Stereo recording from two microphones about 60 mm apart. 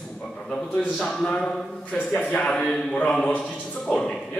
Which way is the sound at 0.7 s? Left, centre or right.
Centre.